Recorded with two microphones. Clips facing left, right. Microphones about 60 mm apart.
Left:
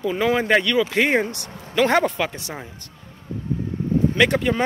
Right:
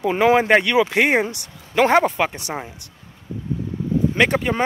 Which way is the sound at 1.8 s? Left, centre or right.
Centre.